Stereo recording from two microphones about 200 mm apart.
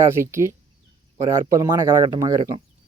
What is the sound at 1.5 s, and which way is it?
Speech, 15° right (ahead or behind).